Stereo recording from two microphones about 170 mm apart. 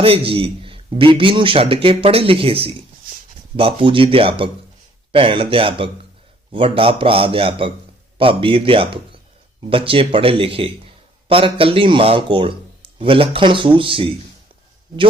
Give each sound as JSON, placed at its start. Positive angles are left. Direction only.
{"t": 0.0, "sound": "a man's voice", "side_deg": -35}